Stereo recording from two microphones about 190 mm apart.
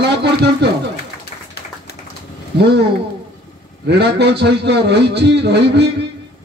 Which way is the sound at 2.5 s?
60° right (ahead or behind).